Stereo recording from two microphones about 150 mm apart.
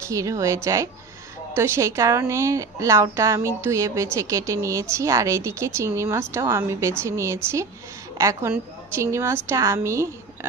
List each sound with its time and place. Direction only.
0.1 s a woman's voice: 20° right (ahead or behind)